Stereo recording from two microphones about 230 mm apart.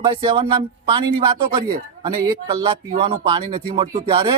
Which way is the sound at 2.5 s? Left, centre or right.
Right.